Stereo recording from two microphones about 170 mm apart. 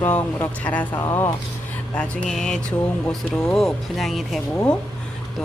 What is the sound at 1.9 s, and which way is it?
Speech, 5° left (ahead or behind).